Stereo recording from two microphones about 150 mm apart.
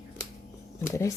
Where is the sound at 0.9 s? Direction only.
20° left (ahead or behind).